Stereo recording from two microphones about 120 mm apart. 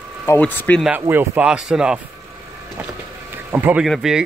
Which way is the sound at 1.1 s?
15° right (ahead or behind).